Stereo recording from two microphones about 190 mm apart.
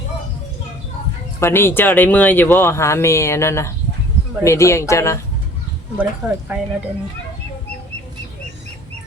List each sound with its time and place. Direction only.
1.4 s speech: 10° left (ahead or behind)
6.0 s speech: 10° right (ahead or behind)